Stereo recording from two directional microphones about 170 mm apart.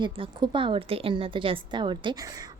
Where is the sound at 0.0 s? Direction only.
30° right (ahead or behind).